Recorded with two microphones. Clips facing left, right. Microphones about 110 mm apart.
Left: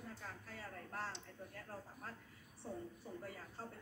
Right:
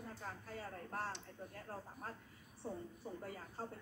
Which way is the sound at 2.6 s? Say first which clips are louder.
Right 2 dB; 30° right (ahead or behind).